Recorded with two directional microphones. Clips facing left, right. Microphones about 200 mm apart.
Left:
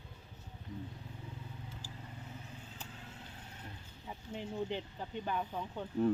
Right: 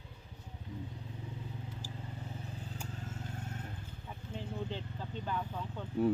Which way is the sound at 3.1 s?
50° right (ahead or behind).